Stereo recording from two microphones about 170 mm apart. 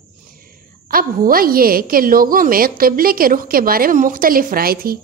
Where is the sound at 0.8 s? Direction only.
60° right (ahead or behind).